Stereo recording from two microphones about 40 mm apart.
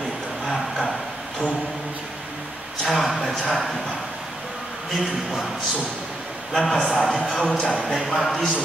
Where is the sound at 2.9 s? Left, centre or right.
Centre.